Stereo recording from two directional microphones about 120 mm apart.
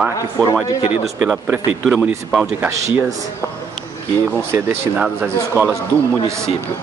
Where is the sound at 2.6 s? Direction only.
25° right (ahead or behind).